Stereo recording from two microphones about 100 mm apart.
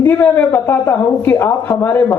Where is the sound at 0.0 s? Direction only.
20° left (ahead or behind).